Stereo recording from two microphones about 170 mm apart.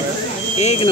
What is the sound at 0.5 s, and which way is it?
Speech, 35° left (ahead or behind).